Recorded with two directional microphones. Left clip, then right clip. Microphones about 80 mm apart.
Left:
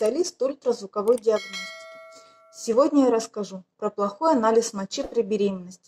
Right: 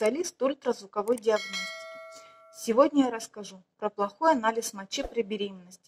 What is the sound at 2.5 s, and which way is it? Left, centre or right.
Speech, left.